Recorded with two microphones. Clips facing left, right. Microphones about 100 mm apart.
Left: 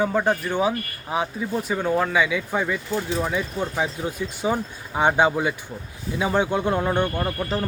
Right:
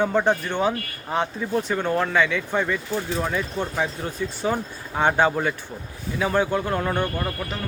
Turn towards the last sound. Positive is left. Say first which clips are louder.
# left 3 dB
turn(degrees=20)  # may be behind; listen again after turning